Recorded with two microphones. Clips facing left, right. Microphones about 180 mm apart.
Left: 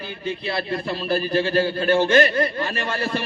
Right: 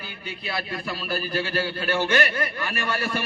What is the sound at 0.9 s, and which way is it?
Speech, 25° left (ahead or behind).